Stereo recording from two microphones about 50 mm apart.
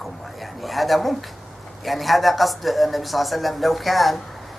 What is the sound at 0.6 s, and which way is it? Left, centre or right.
Speech, centre.